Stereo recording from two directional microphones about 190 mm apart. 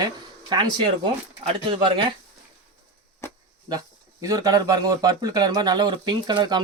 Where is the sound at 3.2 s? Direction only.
15° left (ahead or behind).